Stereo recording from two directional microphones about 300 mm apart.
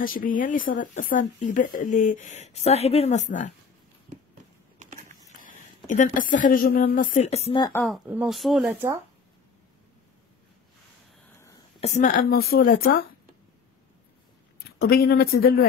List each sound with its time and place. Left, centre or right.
0.0 s speech: left
4.7 s a sound: right
5.4 s a woman's voice: left
7.8 s speech: centre
11.8 s speech: left
14.8 s speech: left